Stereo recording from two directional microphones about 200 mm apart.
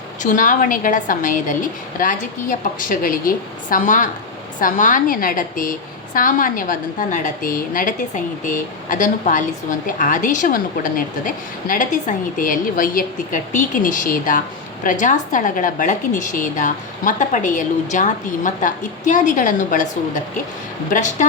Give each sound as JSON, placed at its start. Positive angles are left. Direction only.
{"t": 0.2, "sound": "a woman's voice", "side_deg": 40}